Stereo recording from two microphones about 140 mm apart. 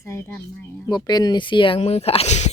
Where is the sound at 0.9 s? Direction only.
30° left (ahead or behind); by 2.5 s 55° left (ahead or behind).